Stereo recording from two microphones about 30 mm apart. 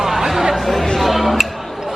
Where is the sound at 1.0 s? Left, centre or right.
Centre.